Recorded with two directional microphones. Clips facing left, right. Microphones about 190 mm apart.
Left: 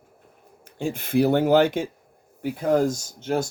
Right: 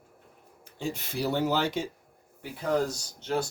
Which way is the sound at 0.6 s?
55° left (ahead or behind).